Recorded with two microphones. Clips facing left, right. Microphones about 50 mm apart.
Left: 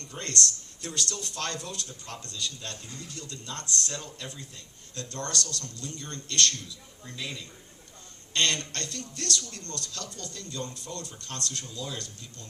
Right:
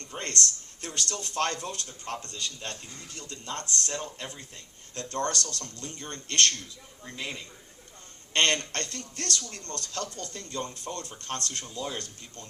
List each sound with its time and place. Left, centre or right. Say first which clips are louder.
0.0 s speech: even; right